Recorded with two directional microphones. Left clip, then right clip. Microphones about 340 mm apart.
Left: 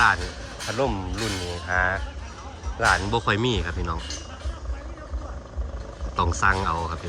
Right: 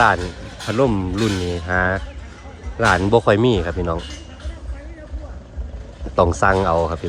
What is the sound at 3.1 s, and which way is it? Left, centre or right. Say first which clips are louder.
Speech: right 9 dB; centre.